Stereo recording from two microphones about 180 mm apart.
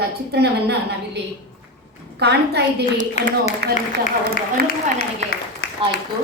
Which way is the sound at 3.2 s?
35° left (ahead or behind).